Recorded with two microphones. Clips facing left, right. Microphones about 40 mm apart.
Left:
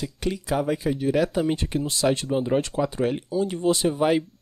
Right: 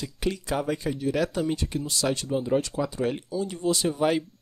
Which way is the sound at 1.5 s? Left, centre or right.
Left.